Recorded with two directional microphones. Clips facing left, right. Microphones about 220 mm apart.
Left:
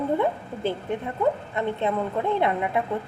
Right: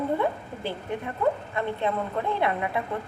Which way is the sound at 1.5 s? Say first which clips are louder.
Left 2 dB; 20° left (ahead or behind).